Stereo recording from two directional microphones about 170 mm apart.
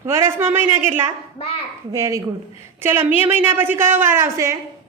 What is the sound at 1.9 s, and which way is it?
A woman's voice, 20° right (ahead or behind).